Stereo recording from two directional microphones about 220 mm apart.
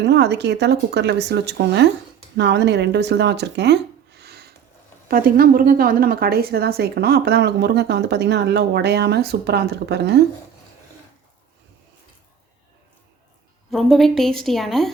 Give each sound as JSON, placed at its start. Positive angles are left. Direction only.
{"t": 0.0, "sound": "a woman's voice", "side_deg": -50}
{"t": 13.7, "sound": "a woman's voice", "side_deg": 0}